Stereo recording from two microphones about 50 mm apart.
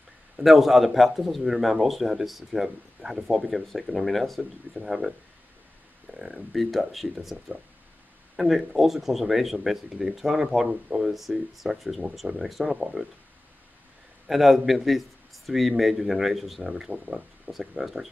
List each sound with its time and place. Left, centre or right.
0.4 s a man's voice: centre
6.1 s a sound: right
6.5 s a man's voice: centre
12.6 s speech: centre
14.2 s a man's voice: centre